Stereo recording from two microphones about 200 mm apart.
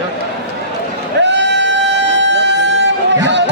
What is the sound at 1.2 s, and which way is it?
Music, 60° right (ahead or behind).